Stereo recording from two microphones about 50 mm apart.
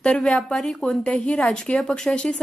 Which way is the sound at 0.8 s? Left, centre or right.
Centre.